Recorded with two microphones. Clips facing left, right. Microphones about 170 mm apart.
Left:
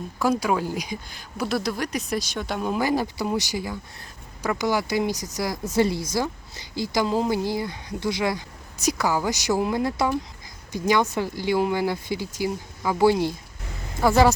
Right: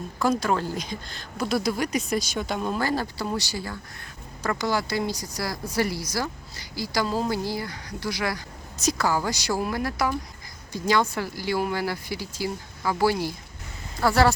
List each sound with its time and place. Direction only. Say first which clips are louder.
0.2 s speech: left 1 dB; 10° left (ahead or behind)